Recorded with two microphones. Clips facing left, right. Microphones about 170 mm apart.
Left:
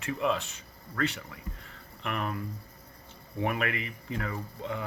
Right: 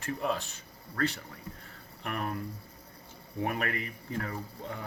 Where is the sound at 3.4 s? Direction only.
40° right (ahead or behind).